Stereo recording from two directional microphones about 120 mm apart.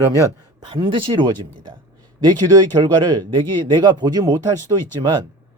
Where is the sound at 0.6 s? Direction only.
40° right (ahead or behind).